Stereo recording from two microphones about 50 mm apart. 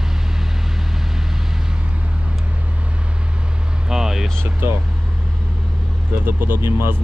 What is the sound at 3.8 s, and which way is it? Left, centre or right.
Vehicle, centre.